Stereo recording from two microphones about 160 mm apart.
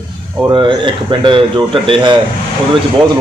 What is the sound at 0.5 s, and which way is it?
Speech, 30° right (ahead or behind).